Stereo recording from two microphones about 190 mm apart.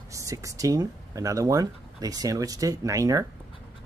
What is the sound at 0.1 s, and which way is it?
Speech, 15° right (ahead or behind).